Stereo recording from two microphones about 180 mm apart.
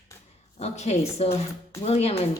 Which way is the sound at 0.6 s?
35° left (ahead or behind).